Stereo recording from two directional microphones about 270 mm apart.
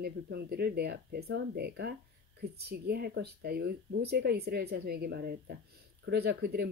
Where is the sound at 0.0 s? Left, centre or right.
Right.